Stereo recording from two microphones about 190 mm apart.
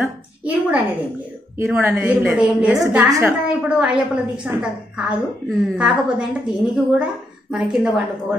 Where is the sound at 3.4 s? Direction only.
5° right (ahead or behind).